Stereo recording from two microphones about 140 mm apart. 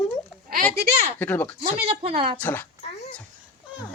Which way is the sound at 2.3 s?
15° left (ahead or behind).